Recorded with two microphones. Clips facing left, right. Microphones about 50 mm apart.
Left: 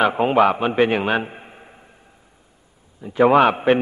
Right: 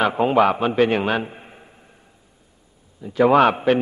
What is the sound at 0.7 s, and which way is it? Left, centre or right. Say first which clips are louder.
Speech: even; centre.